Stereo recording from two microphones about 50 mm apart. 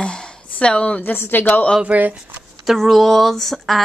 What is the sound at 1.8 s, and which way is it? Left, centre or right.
Speech, right.